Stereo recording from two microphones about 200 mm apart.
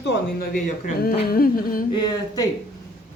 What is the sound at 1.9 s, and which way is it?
Speech, 20° left (ahead or behind).